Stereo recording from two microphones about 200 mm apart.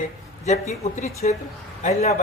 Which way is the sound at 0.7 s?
35° left (ahead or behind).